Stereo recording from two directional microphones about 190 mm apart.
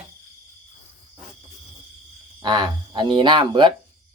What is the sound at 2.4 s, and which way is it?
Speech, 20° right (ahead or behind).